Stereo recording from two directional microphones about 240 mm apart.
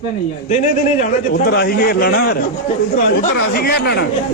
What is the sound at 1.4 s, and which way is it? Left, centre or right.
Speech, left.